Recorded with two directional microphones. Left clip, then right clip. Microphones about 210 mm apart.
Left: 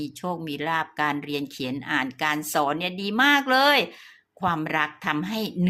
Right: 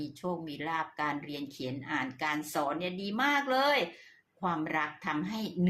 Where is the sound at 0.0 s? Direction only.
40° left (ahead or behind).